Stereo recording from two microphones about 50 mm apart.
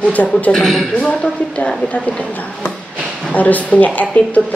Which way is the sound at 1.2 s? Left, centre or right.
Left.